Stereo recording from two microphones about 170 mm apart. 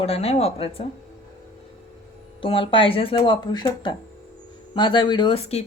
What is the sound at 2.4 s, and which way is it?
Speech, 30° left (ahead or behind).